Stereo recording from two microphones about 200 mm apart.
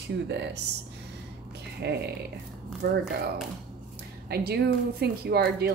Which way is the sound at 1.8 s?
55° right (ahead or behind).